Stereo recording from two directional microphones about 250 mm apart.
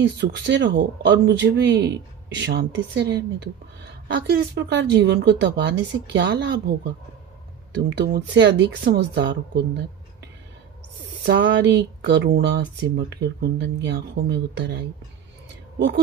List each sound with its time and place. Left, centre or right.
0.2 s speech: right